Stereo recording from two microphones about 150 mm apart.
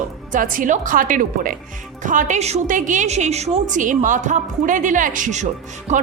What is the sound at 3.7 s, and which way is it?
A woman's voice, 55° right (ahead or behind).